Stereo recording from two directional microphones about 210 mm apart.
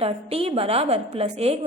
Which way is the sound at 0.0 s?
30° right (ahead or behind).